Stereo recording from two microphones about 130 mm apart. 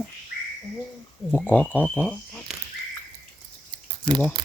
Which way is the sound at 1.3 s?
10° left (ahead or behind).